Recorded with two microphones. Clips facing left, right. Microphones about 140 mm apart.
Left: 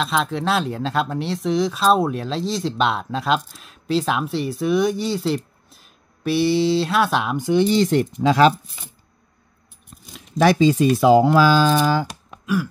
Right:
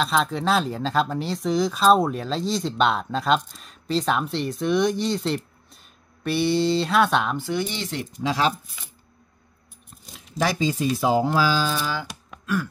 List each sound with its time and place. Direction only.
0.0 s speech: centre (ahead or behind)
7.3 s speech: 20° left (ahead or behind)
7.6 s speech: 40° left (ahead or behind); by 8.5 s 65° left (ahead or behind)
10.4 s speech: 70° left (ahead or behind)
11.9 s a sound: 45° left (ahead or behind)